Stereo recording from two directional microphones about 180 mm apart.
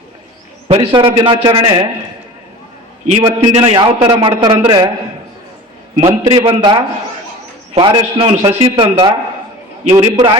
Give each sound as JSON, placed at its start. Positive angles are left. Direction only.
{"t": 0.7, "sound": "a man's voice", "side_deg": -30}
{"t": 3.1, "sound": "a man's voice", "side_deg": -30}
{"t": 6.0, "sound": "a man's voice", "side_deg": -30}